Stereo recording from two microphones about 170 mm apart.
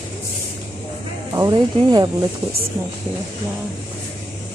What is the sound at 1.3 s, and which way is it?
Speech, 25° right (ahead or behind).